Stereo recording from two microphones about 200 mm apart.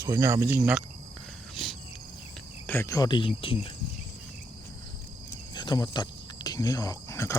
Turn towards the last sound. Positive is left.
turn(degrees=15)  # may be behind; listen again after turning